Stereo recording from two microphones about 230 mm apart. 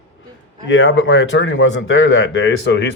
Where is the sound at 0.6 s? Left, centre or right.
Left.